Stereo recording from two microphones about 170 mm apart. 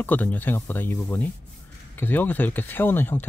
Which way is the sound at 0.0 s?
10° left (ahead or behind).